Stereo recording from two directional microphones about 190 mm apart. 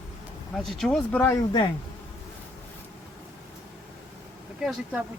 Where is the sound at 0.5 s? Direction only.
Centre (ahead or behind).